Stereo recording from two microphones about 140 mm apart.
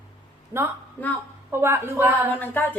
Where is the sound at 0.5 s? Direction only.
15° right (ahead or behind).